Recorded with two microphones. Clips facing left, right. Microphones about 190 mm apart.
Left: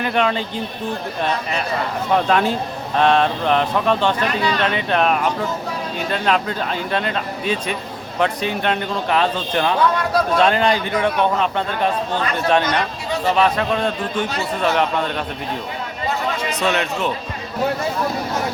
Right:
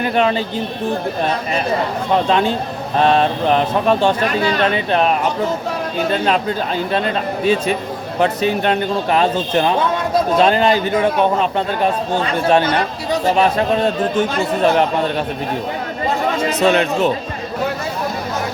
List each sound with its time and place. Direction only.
2.1 s speech: 25° right (ahead or behind)
6.9 s speech: 35° right (ahead or behind)
9.6 s speech: 25° right (ahead or behind)
10.3 s speech: 35° right (ahead or behind)
16.4 s speech: 40° right (ahead or behind)